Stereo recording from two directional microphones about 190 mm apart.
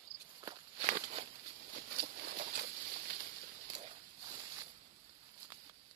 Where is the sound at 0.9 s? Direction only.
40° right (ahead or behind).